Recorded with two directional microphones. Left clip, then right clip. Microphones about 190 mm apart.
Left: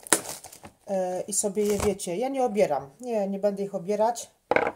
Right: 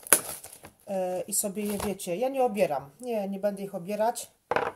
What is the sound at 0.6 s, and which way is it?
Speech, centre (ahead or behind).